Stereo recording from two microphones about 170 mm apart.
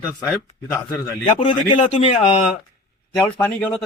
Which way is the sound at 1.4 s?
30° left (ahead or behind).